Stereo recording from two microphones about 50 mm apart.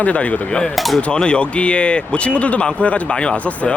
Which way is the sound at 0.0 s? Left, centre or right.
Left.